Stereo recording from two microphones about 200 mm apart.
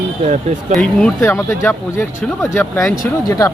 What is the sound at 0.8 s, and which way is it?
Speech, 5° left (ahead or behind).